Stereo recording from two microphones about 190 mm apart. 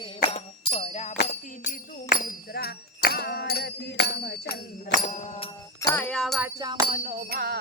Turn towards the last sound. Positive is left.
turn(degrees=-55)  # may be behind; listen again after turning